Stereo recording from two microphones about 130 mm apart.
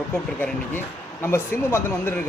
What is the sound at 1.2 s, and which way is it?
Speech, 20° left (ahead or behind).